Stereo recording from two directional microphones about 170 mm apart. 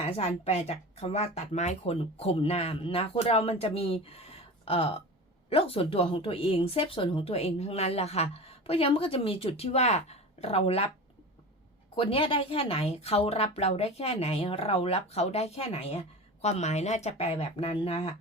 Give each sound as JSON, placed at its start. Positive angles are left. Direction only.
{"t": 0.2, "sound": "speech", "side_deg": 40}
{"t": 11.9, "sound": "speech", "side_deg": 30}